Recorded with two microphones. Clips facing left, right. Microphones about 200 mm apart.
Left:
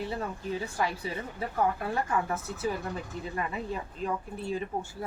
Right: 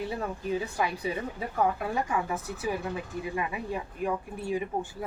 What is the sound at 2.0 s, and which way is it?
Speech, 15° right (ahead or behind).